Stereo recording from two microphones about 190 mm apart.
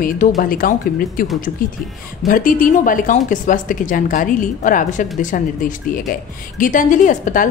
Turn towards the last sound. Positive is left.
turn(degrees=45)  # may be behind; listen again after turning